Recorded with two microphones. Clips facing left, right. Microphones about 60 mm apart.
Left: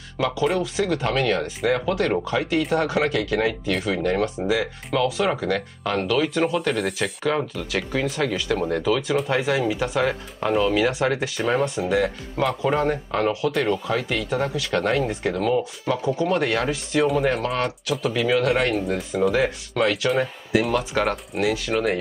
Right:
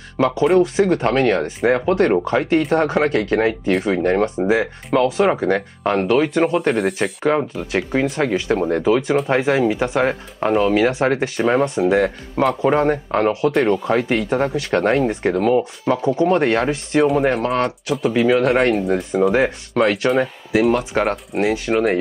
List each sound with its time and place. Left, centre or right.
0.2 s speech: right
7.0 s speech: right
18.9 s speech: centre
19.3 s speech: right
20.9 s speech: right